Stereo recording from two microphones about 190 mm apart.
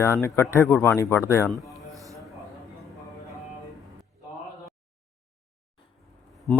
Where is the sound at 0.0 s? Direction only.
15° left (ahead or behind).